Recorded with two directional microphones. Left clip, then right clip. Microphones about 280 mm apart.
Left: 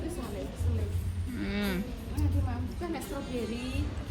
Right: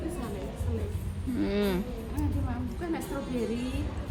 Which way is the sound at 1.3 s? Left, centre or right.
Centre.